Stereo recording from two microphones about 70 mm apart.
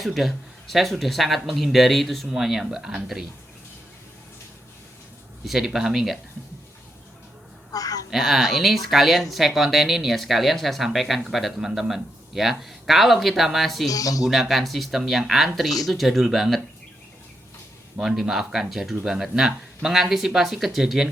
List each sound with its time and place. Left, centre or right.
0.0 s speech: centre
5.5 s speech: centre
7.7 s a sound: left
8.1 s speech: centre
13.8 s speech: left
14.3 s speech: centre
17.9 s speech: centre